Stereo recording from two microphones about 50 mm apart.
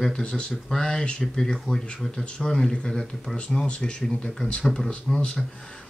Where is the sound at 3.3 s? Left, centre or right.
Left.